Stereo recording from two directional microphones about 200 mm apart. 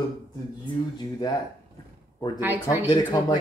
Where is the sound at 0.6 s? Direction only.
20° left (ahead or behind).